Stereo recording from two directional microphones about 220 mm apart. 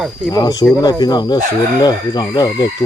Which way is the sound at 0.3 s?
20° left (ahead or behind).